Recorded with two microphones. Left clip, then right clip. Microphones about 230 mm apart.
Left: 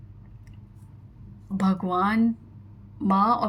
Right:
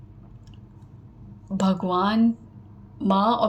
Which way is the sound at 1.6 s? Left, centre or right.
Left.